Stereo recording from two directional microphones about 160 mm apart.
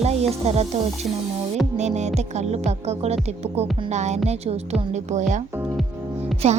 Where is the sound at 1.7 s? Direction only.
45° right (ahead or behind).